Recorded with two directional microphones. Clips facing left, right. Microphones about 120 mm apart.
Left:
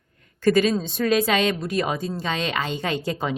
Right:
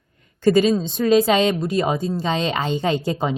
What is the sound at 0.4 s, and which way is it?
A woman's voice, 25° right (ahead or behind).